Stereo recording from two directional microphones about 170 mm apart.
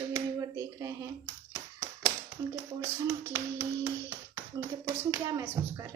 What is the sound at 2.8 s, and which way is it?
Speech, 20° right (ahead or behind).